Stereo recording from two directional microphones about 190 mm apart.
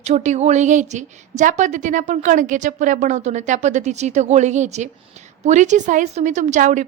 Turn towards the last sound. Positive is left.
turn(degrees=-40)  # may be behind; listen again after turning